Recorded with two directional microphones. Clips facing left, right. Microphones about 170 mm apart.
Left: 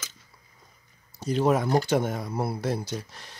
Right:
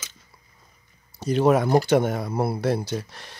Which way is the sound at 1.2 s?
70° right (ahead or behind).